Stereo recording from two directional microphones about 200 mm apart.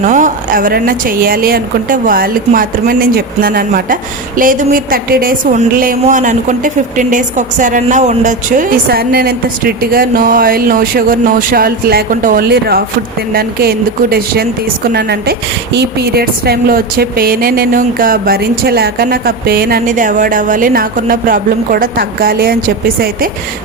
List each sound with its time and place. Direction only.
0.0 s a woman's voice: 40° right (ahead or behind)